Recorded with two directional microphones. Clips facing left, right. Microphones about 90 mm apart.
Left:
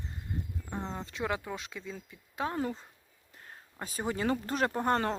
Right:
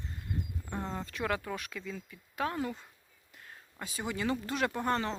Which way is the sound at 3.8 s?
40° left (ahead or behind).